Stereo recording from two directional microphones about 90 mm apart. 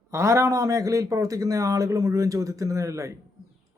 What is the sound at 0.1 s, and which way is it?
A man's voice, 35° right (ahead or behind).